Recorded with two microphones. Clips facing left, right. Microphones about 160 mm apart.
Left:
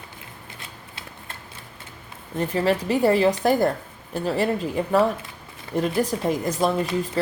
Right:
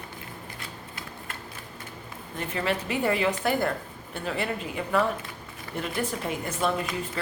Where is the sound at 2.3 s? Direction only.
35° left (ahead or behind).